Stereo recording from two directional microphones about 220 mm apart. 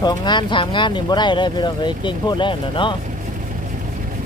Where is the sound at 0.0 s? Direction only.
20° left (ahead or behind).